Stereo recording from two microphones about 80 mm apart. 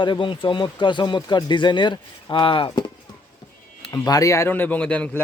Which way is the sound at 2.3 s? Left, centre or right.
Left.